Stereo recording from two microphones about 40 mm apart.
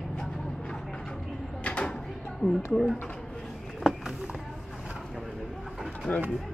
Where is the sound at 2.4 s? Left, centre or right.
Centre.